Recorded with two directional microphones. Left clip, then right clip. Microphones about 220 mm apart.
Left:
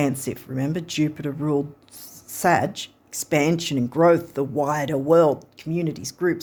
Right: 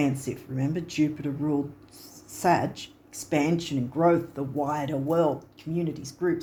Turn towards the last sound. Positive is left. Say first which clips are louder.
# left 4 dB
turn(degrees=50)  # may be behind; listen again after turning